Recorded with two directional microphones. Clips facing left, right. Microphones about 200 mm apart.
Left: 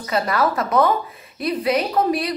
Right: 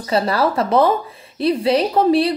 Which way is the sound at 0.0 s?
30° right (ahead or behind).